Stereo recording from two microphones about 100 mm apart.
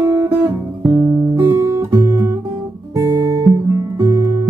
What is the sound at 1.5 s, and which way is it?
Guitar, 30° right (ahead or behind).